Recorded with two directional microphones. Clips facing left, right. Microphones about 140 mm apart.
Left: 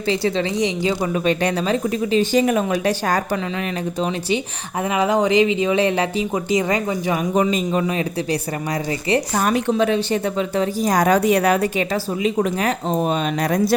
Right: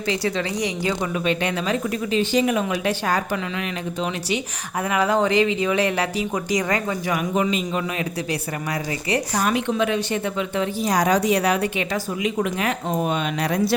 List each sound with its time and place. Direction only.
0.1 s speech: 30° left (ahead or behind)
1.1 s speech: 40° left (ahead or behind)
4.9 s speech: 15° left (ahead or behind)
7.3 s speech: 35° left (ahead or behind)
9.4 s speech: 40° left (ahead or behind)
13.4 s speech: 45° left (ahead or behind)